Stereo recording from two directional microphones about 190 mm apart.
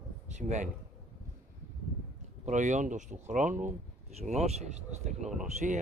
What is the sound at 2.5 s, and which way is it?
Speech, 40° right (ahead or behind).